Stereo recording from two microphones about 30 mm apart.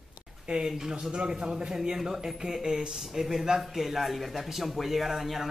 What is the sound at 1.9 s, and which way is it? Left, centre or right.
Speech, centre.